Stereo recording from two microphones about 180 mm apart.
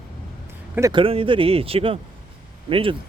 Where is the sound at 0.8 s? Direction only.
20° right (ahead or behind).